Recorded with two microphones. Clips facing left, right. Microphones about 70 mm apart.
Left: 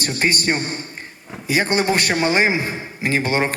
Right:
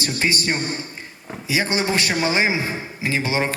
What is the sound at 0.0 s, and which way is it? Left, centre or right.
A man's voice, left.